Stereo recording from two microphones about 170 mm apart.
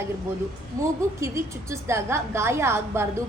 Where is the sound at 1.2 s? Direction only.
15° right (ahead or behind).